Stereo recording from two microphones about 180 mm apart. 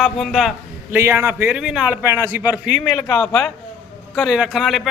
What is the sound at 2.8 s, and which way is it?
Speech, 20° left (ahead or behind).